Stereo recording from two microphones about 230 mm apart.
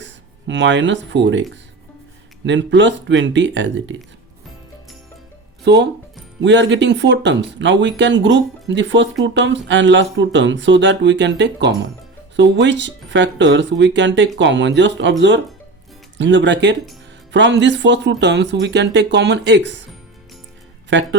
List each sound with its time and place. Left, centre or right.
0.0 s speech: right
2.5 s speech: right
5.6 s speech: right
16.1 s speech: right
20.9 s speech: right